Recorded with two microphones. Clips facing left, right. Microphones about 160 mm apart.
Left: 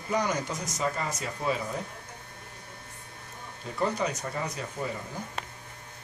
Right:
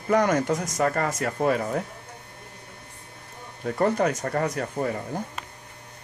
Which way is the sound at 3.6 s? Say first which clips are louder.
Right 7 dB; 55° right (ahead or behind).